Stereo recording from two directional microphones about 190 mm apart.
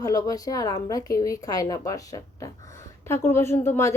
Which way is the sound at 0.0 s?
20° left (ahead or behind).